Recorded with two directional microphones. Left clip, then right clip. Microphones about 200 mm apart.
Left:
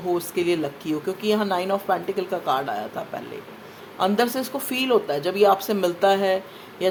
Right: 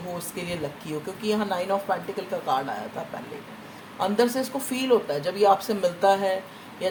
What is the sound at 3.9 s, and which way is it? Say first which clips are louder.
Speech: left 2 dB; 45° left (ahead or behind).